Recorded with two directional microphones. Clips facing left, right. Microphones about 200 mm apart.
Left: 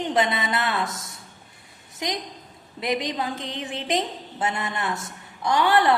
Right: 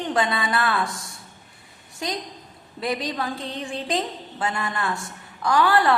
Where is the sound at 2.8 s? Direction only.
20° left (ahead or behind).